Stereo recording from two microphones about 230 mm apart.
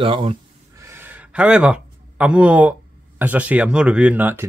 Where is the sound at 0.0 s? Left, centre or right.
Right; by 2.7 s centre.